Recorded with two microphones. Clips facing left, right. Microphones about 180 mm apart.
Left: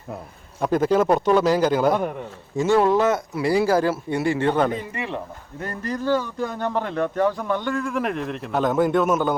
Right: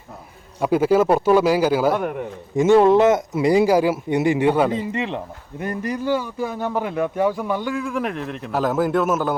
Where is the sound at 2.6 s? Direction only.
20° right (ahead or behind).